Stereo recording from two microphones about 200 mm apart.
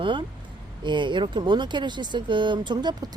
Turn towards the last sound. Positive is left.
turn(degrees=-20)  # may be behind; listen again after turning